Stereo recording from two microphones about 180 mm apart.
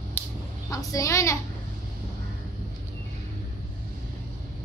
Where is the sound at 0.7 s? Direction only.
20° left (ahead or behind).